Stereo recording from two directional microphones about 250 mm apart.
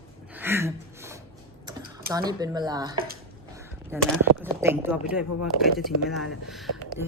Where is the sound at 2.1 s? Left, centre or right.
Centre.